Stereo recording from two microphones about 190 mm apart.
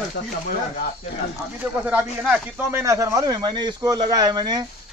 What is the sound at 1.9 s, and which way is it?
A man's voice, 5° right (ahead or behind).